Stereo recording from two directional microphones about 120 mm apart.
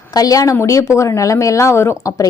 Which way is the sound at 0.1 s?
30° left (ahead or behind).